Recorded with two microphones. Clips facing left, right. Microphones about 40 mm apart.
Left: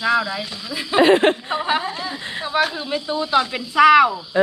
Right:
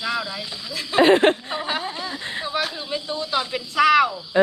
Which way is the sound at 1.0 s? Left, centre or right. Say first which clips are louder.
Left 1 dB; left.